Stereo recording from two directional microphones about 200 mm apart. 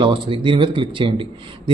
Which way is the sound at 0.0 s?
25° right (ahead or behind).